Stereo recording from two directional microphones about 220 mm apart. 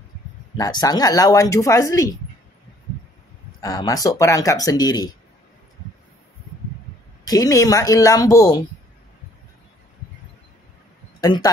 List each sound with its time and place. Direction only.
0.6 s speech: 15° left (ahead or behind)
3.6 s speech: 15° left (ahead or behind)
7.2 s speech: 15° left (ahead or behind)
11.1 s a man's voice: 20° left (ahead or behind)